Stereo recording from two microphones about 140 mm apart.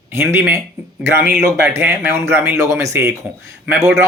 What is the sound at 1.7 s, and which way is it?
Speech, 15° right (ahead or behind).